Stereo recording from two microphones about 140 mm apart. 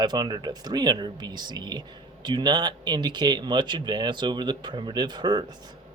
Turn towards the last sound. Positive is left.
turn(degrees=-30)  # may be behind; listen again after turning